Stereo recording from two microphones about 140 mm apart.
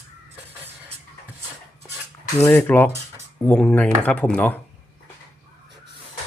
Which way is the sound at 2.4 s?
15° left (ahead or behind).